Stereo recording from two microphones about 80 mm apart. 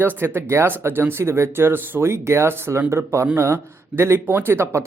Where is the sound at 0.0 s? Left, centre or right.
Right.